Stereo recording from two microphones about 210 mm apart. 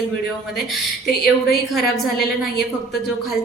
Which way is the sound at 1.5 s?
Centre (ahead or behind).